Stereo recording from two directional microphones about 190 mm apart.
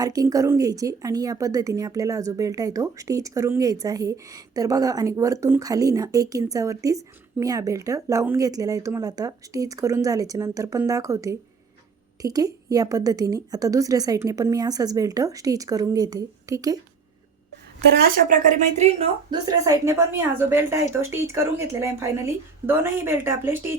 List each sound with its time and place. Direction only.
0.0 s a woman's voice: 20° right (ahead or behind)
18.8 s a woman's voice: 35° right (ahead or behind)
19.3 s a woman's voice: 20° right (ahead or behind)